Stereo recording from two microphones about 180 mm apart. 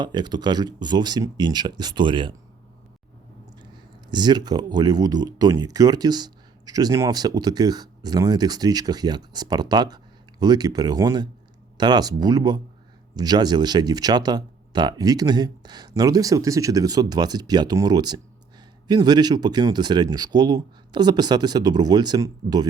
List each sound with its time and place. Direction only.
0.0 s speech: 25° right (ahead or behind)
4.1 s speech: 25° right (ahead or behind)